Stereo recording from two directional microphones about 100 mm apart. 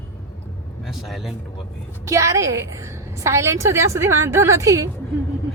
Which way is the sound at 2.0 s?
30° right (ahead or behind).